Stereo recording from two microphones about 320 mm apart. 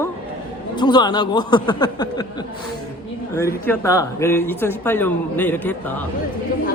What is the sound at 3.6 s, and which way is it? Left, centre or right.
A man's voice, centre.